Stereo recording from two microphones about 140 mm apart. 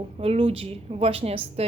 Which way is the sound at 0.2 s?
45° right (ahead or behind).